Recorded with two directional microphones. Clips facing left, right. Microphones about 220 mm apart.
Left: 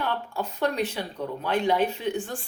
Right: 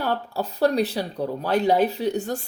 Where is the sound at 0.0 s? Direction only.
35° right (ahead or behind).